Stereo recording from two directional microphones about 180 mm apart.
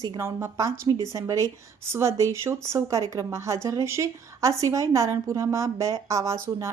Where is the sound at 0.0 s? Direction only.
20° right (ahead or behind).